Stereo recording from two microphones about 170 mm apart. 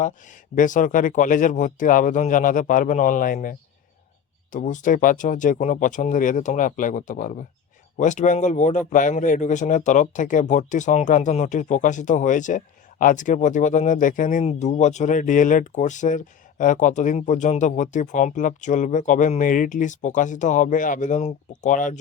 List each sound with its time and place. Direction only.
0.0 s speech: 50° left (ahead or behind)
4.5 s speech: 50° left (ahead or behind)